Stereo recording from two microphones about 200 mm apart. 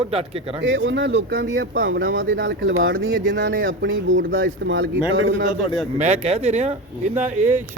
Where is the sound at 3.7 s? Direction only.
70° right (ahead or behind).